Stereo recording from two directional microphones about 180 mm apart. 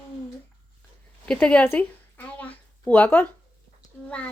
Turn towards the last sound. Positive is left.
turn(degrees=10)  # may be behind; listen again after turning